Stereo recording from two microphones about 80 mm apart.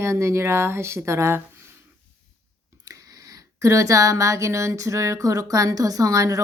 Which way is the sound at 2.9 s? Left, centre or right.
Right.